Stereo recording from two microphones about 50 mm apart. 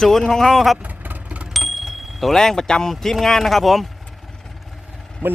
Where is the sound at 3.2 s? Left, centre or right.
Centre.